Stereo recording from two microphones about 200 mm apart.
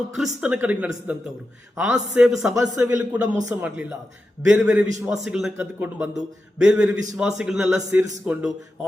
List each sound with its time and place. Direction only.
0.4 s a man's voice: 5° right (ahead or behind)